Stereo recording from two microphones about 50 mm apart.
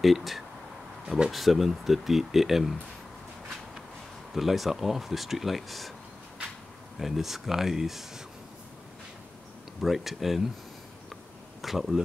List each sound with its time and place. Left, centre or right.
0.0 s speech: centre
4.3 s speech: centre
7.0 s speech: centre
9.8 s speech: centre
11.6 s speech: centre